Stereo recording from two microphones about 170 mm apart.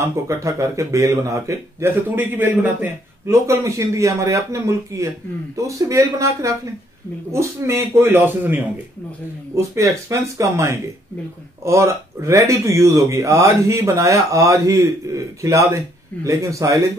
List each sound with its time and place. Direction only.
0.0 s speech: 15° right (ahead or behind)